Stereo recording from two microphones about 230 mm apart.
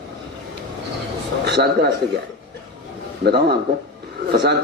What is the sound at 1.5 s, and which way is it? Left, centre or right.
Speech, right.